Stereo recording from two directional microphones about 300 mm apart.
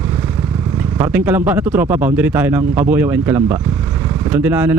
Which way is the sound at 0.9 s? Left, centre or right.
Centre.